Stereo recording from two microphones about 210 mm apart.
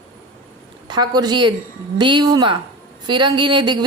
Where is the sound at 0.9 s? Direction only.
20° right (ahead or behind).